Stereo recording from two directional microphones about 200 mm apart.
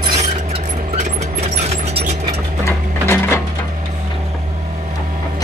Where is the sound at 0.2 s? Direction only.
35° right (ahead or behind).